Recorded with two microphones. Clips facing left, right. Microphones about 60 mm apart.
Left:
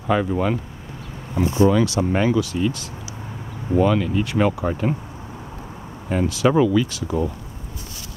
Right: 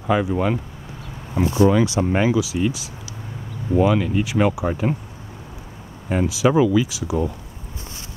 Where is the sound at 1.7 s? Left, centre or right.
Centre.